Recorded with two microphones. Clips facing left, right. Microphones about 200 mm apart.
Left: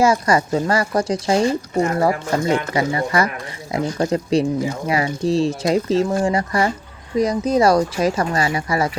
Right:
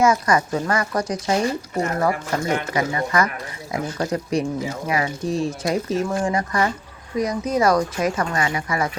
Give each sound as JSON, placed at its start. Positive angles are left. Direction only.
{"t": 0.0, "sound": "speech", "side_deg": 30}